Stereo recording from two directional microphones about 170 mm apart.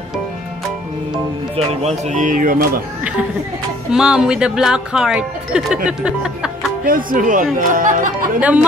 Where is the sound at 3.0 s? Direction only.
10° right (ahead or behind).